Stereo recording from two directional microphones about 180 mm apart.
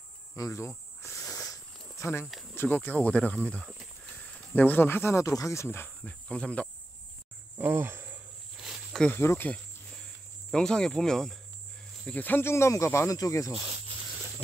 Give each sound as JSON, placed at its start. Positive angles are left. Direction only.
{"t": 0.4, "sound": "snake", "side_deg": 15}
{"t": 2.5, "sound": "speech", "side_deg": 10}
{"t": 7.5, "sound": "cricket", "side_deg": -10}
{"t": 8.5, "sound": "snake", "side_deg": -5}
{"t": 9.1, "sound": "speech", "side_deg": 15}